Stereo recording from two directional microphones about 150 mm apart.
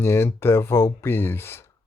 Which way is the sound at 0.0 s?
15° left (ahead or behind).